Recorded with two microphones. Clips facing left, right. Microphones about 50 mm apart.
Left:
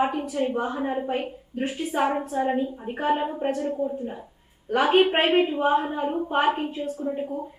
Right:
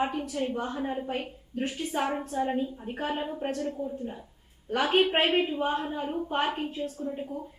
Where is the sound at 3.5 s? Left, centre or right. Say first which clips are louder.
Left 5 dB; centre.